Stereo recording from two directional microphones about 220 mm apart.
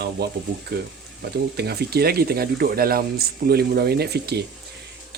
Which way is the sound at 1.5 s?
45° right (ahead or behind).